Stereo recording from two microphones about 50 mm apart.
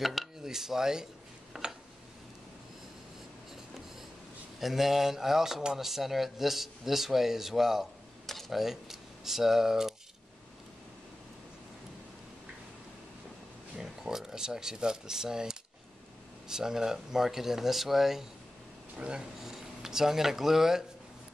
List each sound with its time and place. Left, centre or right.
0.0 s a sound: centre
1.5 s tick: centre
4.6 s speech: centre
13.7 s speech: centre
18.9 s speech: right
19.4 s speech: centre